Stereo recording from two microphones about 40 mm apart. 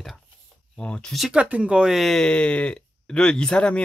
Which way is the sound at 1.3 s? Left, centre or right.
Right.